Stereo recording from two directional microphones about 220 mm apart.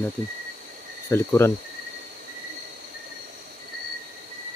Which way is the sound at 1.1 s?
10° left (ahead or behind).